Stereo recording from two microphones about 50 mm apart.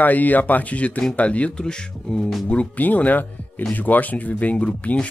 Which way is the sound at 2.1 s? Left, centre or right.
Centre.